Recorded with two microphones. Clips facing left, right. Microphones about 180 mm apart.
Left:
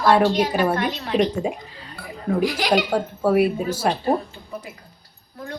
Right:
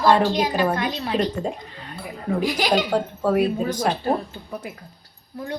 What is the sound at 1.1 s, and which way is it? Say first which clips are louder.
Speech: left 4 dB; 10° left (ahead or behind).